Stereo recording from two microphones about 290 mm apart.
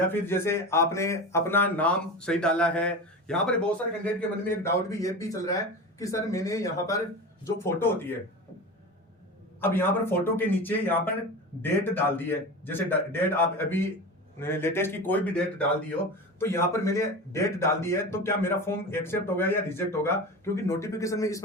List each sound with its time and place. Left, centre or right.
0.1 s speech: centre
9.6 s speech: centre